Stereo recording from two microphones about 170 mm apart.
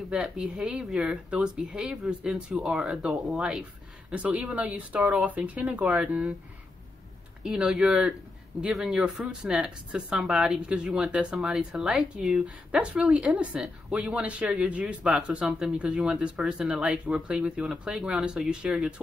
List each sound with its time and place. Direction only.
0.1 s speech: 5° right (ahead or behind)
7.4 s speech: 5° right (ahead or behind)